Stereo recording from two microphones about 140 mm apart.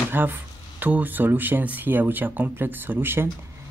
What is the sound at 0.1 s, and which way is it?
Speech, 15° right (ahead or behind).